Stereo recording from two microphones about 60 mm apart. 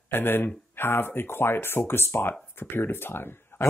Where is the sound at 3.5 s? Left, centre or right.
Left.